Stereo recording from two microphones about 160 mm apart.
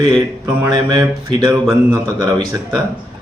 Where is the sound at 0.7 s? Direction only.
25° right (ahead or behind).